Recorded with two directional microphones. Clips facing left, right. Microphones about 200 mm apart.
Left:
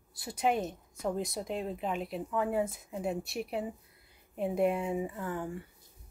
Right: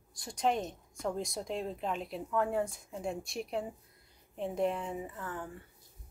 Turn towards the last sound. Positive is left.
turn(degrees=10)  # may be behind; listen again after turning